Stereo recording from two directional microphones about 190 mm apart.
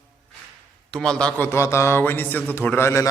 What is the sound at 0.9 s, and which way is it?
A man's voice, 5° left (ahead or behind).